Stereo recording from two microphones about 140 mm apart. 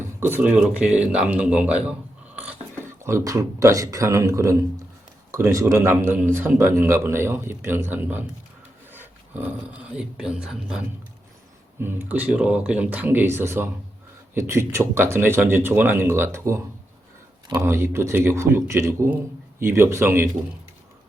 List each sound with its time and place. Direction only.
0.2 s a man's voice: 15° right (ahead or behind)
11.8 s a man's voice: 15° right (ahead or behind)